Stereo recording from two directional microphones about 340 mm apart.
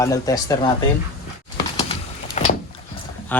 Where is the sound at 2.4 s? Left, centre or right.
Left.